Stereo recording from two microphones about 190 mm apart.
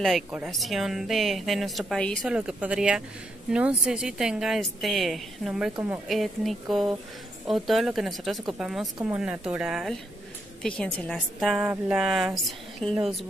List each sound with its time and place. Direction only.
0.0 s speech: 5° right (ahead or behind)